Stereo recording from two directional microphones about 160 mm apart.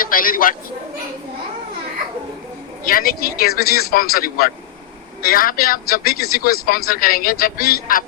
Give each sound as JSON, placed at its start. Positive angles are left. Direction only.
{"t": 0.0, "sound": "a man's voice", "side_deg": 60}
{"t": 2.8, "sound": "speech", "side_deg": 65}